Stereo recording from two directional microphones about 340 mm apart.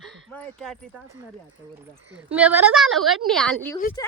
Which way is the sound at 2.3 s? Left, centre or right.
Centre.